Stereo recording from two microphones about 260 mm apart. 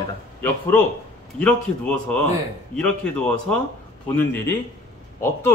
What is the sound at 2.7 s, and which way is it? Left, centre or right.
A man's voice, centre.